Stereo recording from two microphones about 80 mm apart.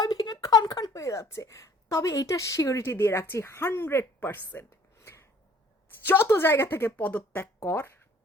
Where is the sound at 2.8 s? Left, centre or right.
Left.